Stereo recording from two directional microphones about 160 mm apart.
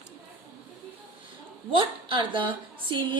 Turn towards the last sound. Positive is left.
turn(degrees=-30)  # may be behind; listen again after turning